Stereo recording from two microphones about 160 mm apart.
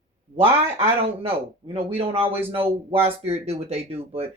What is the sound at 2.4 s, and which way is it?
Speech, 15° right (ahead or behind).